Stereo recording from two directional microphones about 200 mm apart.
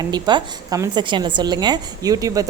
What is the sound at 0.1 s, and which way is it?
A woman's voice, 20° right (ahead or behind).